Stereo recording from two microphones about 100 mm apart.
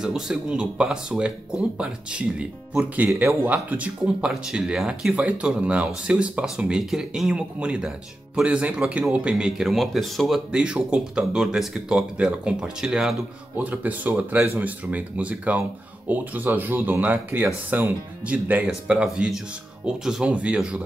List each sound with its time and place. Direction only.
0.0 s speech: 5° right (ahead or behind)
13.6 s speech: 15° right (ahead or behind)